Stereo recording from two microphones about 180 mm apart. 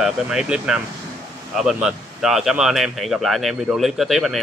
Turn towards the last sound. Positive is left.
turn(degrees=0)  # may be behind; listen again after turning